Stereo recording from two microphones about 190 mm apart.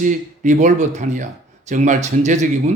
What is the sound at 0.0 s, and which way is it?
A man's voice, 40° right (ahead or behind).